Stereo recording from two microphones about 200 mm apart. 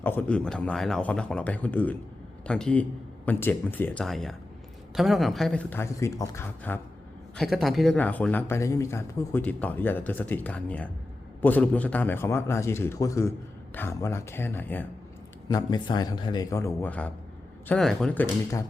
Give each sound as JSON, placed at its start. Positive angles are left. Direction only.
{"t": 0.0, "sound": "speech", "side_deg": 10}
{"t": 7.3, "sound": "speech", "side_deg": 0}
{"t": 15.4, "sound": "a man's voice", "side_deg": 20}